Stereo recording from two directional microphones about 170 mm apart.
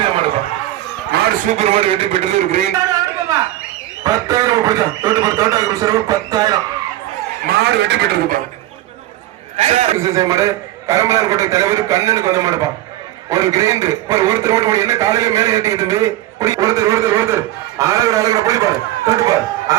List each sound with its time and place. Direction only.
1.1 s a sound: 75° right (ahead or behind)
1.5 s speech: 40° right (ahead or behind)
4.0 s a man's voice: 20° right (ahead or behind)
7.4 s speech: 70° right (ahead or behind)
9.6 s speech: 40° right (ahead or behind)
10.0 s a man's voice: 20° right (ahead or behind)